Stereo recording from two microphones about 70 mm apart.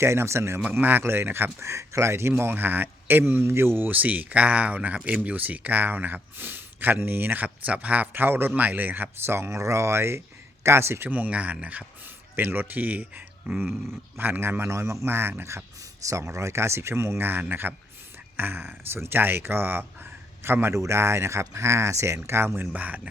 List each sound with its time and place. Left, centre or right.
0.0 s speech: right
0.7 s speech: right
11.1 s speech: right
12.4 s speech: right
22.6 s speech: right